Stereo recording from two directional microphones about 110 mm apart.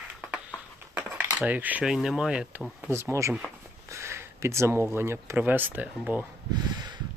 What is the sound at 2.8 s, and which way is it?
Speech, 25° right (ahead or behind).